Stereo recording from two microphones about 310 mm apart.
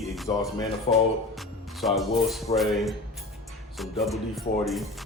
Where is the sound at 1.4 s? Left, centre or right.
Centre.